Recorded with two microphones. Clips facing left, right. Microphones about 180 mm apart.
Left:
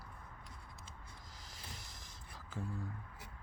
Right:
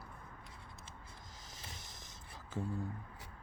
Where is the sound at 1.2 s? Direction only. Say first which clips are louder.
Left 1 dB; 20° right (ahead or behind).